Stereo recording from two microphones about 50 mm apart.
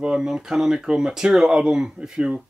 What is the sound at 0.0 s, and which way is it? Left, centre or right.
Speech, centre.